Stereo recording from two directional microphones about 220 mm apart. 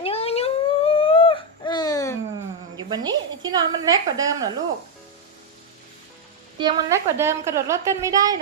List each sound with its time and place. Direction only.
0.0 s a sound: 25° left (ahead or behind)
2.7 s a woman's voice: 20° right (ahead or behind)
6.6 s a woman's voice: 20° right (ahead or behind)